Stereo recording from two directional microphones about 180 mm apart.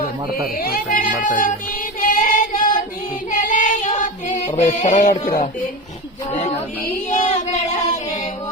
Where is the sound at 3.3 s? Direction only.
45° left (ahead or behind).